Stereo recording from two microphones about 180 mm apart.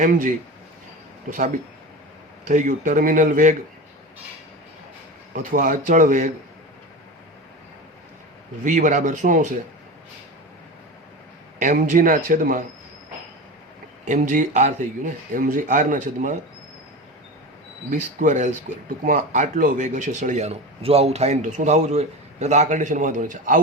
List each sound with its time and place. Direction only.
0.0 s speech: 45° right (ahead or behind)
2.5 s speech: 45° right (ahead or behind)
5.3 s speech: 50° right (ahead or behind)
8.6 s speech: 45° right (ahead or behind)
11.6 s speech: 45° right (ahead or behind)
14.0 s speech: 45° right (ahead or behind)
18.2 s speech: 45° right (ahead or behind)